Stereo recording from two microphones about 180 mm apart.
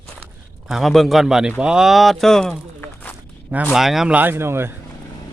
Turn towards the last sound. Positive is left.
turn(degrees=-15)  # may be behind; listen again after turning